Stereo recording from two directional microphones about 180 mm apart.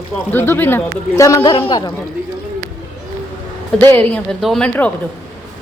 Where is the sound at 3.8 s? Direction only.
10° left (ahead or behind).